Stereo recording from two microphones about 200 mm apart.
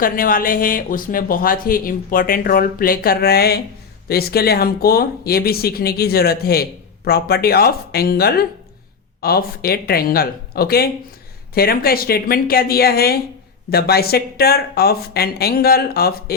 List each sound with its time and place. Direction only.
0.0 s speech: 45° left (ahead or behind)